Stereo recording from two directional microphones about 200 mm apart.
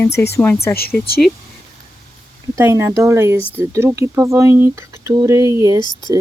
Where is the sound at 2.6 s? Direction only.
15° right (ahead or behind).